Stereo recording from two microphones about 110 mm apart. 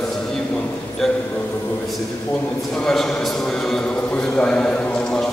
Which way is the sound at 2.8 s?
5° left (ahead or behind).